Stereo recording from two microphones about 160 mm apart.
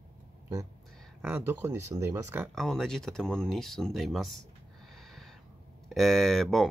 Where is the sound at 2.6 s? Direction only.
5° left (ahead or behind).